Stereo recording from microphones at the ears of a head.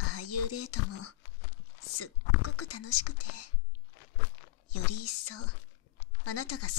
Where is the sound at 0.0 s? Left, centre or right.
Left.